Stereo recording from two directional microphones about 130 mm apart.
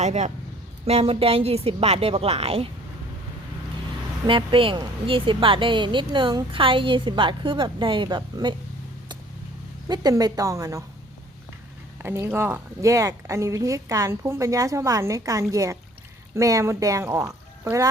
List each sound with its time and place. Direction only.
0.0 s a man's voice: 60° right (ahead or behind)
0.9 s a woman's voice: 50° right (ahead or behind)
4.3 s speech: 40° right (ahead or behind)
9.9 s speech: 30° right (ahead or behind)
12.0 s speech: 20° right (ahead or behind)